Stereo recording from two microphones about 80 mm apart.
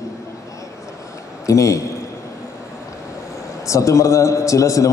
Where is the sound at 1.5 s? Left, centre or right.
Left.